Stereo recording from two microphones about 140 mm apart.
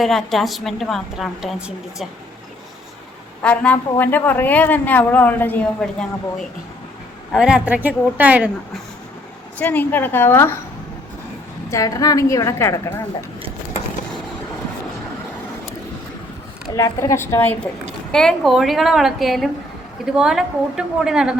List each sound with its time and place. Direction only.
0.0 s a woman's voice: centre (ahead or behind)
3.4 s a woman's voice: 10° left (ahead or behind)
7.3 s speech: 5° right (ahead or behind)
9.6 s a woman's voice: 15° left (ahead or behind)
11.7 s a woman's voice: 25° left (ahead or behind)
16.6 s a woman's voice: 20° left (ahead or behind); by 21.3 s 5° right (ahead or behind)